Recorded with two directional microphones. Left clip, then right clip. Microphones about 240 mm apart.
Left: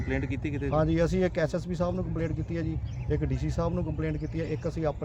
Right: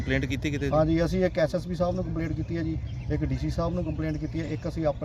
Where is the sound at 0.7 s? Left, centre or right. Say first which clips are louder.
Right 2 dB; centre.